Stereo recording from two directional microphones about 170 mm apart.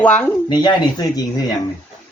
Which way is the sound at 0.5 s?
25° left (ahead or behind).